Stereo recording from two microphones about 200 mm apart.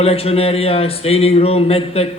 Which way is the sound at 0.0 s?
30° left (ahead or behind).